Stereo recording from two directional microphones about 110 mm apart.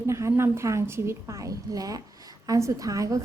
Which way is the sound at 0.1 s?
25° right (ahead or behind).